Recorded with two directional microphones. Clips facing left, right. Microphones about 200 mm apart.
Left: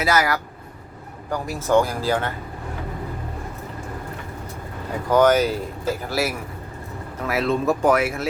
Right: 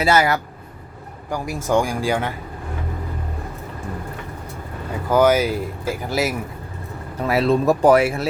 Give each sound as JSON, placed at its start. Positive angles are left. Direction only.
{"t": 0.0, "sound": "speech", "side_deg": -25}
{"t": 1.3, "sound": "speech", "side_deg": -15}
{"t": 5.1, "sound": "speech", "side_deg": -10}
{"t": 7.2, "sound": "speech", "side_deg": -30}